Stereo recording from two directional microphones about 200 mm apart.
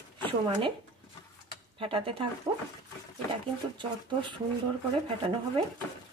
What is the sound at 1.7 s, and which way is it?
Speech, 25° right (ahead or behind).